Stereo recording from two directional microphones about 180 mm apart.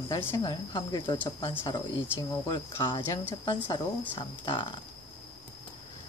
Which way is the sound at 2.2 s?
20° left (ahead or behind).